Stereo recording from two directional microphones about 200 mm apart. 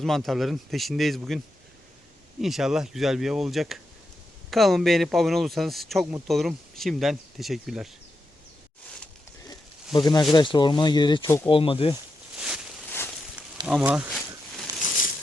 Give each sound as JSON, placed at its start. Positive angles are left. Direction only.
{"t": 0.0, "sound": "speech", "side_deg": 0}
{"t": 2.4, "sound": "speech", "side_deg": 0}
{"t": 9.9, "sound": "speech", "side_deg": 20}
{"t": 12.4, "sound": "a sound", "side_deg": -5}
{"t": 13.7, "sound": "speech", "side_deg": -5}
{"t": 14.7, "sound": "a sound", "side_deg": -20}